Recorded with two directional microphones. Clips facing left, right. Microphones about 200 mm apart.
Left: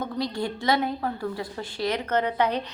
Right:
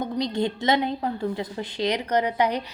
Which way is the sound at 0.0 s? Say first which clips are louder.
Right 3 dB; 20° right (ahead or behind).